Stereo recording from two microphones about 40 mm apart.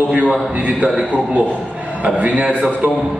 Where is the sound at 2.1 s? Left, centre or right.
Right.